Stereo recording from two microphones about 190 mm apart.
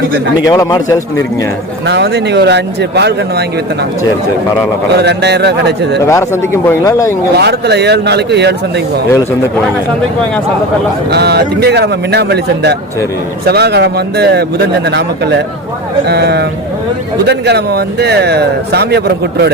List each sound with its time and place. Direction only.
0.4 s speech: 20° left (ahead or behind)
1.9 s speech: 60° right (ahead or behind)
5.0 s speech: 60° right (ahead or behind)
6.1 s speech: 15° left (ahead or behind)
7.3 s speech: 60° right (ahead or behind)
11.1 s speech: 60° right (ahead or behind)